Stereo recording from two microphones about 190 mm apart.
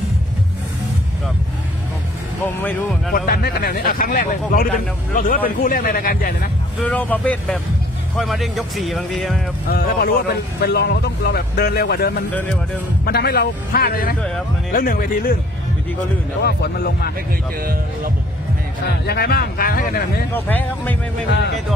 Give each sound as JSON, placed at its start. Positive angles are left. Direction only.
{"t": 2.4, "sound": "speech", "side_deg": 10}
{"t": 3.1, "sound": "speech", "side_deg": 50}
{"t": 6.8, "sound": "speech", "side_deg": 10}
{"t": 9.7, "sound": "speech", "side_deg": 55}
{"t": 16.4, "sound": "speech", "side_deg": 60}
{"t": 19.0, "sound": "speech", "side_deg": 55}
{"t": 20.3, "sound": "speech", "side_deg": 10}
{"t": 21.3, "sound": "speech", "side_deg": 65}